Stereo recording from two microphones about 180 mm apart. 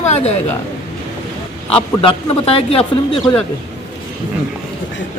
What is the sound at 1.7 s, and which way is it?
Speech, 30° left (ahead or behind).